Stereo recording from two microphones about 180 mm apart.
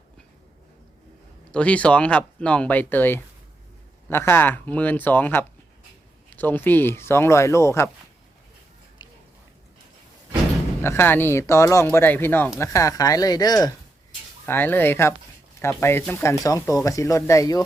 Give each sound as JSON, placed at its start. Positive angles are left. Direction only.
{"t": 1.5, "sound": "speech", "side_deg": 5}
{"t": 9.0, "sound": "a sound", "side_deg": 25}
{"t": 10.8, "sound": "speech", "side_deg": 15}